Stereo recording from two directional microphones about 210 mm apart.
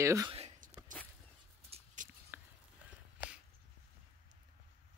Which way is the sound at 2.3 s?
10° right (ahead or behind).